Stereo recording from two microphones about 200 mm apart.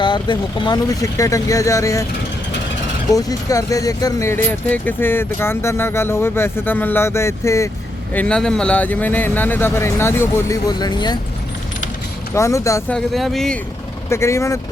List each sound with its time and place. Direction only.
0.0 s speech: 25° left (ahead or behind)
3.1 s speech: 15° left (ahead or behind)
12.3 s speech: 15° left (ahead or behind)
12.9 s speech: centre (ahead or behind)
14.1 s speech: 15° left (ahead or behind)